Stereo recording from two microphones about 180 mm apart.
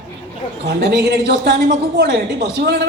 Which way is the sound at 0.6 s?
70° right (ahead or behind).